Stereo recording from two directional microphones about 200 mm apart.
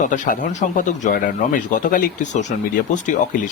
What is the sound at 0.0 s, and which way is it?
Speech, 40° left (ahead or behind).